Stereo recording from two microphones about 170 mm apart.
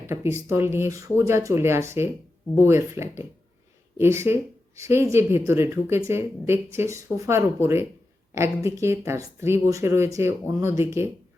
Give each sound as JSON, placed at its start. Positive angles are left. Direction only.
{"t": 0.1, "sound": "a woman's voice", "side_deg": -15}